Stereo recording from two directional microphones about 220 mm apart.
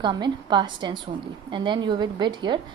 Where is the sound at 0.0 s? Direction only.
20° right (ahead or behind).